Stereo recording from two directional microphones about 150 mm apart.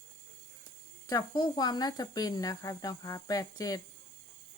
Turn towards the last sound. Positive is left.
turn(degrees=25)  # may be behind; listen again after turning